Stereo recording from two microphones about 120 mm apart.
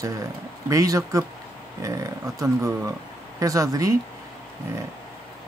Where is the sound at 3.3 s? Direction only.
30° right (ahead or behind).